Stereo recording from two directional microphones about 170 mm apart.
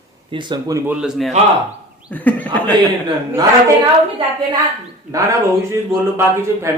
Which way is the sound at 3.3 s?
20° right (ahead or behind).